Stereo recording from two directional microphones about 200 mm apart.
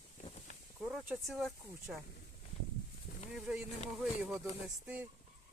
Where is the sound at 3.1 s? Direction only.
45° left (ahead or behind).